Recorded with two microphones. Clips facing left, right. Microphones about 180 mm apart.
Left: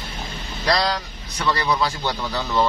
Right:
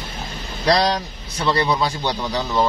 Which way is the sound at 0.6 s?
20° right (ahead or behind).